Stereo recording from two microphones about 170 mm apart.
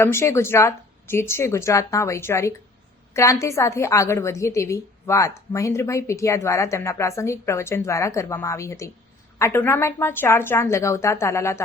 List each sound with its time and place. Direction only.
0.0 s a woman's voice: 15° left (ahead or behind)